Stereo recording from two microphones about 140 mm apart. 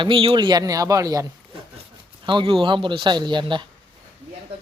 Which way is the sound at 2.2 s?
35° right (ahead or behind).